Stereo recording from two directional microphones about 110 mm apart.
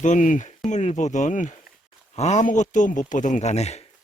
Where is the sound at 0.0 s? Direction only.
90° left.